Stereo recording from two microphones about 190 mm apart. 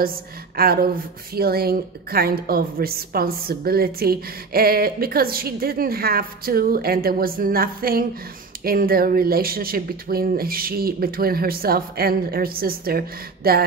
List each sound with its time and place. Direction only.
0.6 s a woman's voice: 50° right (ahead or behind)